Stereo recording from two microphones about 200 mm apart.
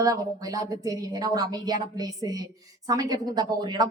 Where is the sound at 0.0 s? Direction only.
15° right (ahead or behind).